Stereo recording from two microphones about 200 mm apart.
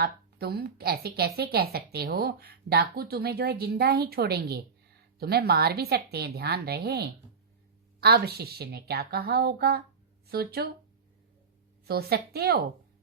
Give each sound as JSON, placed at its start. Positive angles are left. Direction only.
{"t": 0.0, "sound": "a woman's voice", "side_deg": -50}
{"t": 11.9, "sound": "a woman's voice", "side_deg": -50}